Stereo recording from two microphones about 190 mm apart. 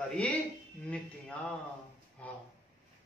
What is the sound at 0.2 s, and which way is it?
Speech, 5° left (ahead or behind).